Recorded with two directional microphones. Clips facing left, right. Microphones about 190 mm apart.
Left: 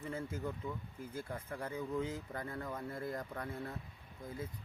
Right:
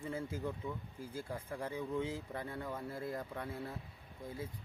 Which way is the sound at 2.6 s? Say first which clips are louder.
Even; 5° right (ahead or behind).